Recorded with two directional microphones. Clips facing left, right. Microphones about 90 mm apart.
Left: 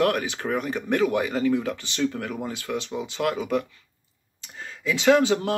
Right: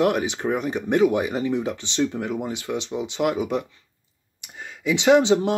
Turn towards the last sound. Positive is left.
turn(degrees=-20)  # may be behind; listen again after turning